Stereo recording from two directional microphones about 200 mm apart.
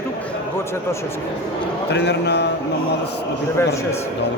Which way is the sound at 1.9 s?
60° left (ahead or behind).